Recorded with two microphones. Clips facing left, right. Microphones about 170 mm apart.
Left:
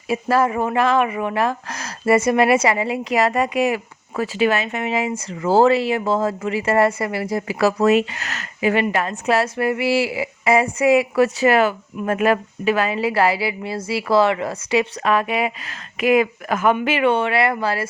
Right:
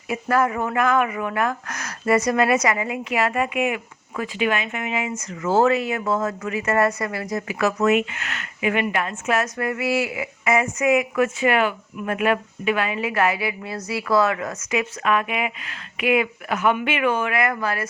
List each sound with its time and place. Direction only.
0.1 s speech: 30° left (ahead or behind)